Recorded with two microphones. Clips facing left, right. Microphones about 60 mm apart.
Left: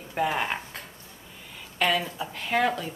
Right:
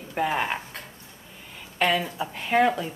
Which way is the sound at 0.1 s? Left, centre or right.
Centre.